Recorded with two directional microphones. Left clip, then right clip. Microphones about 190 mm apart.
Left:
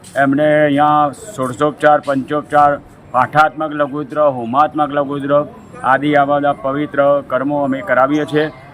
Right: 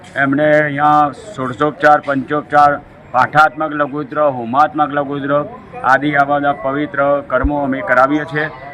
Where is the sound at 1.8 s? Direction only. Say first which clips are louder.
Right 1 dB; 20° left (ahead or behind).